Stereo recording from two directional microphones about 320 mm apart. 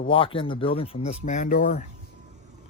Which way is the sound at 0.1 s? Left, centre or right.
Centre.